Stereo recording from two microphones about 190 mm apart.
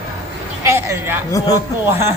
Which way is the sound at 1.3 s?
20° left (ahead or behind).